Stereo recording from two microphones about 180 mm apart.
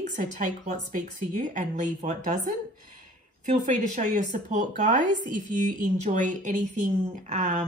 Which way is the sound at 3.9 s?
45° right (ahead or behind).